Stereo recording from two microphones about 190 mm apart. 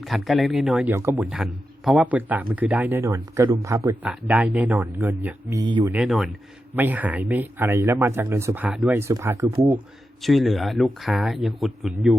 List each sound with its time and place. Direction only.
0.0 s a man's voice: centre (ahead or behind); by 5.8 s 20° right (ahead or behind)
5.8 s a man's voice: 10° right (ahead or behind)
10.2 s speech: centre (ahead or behind)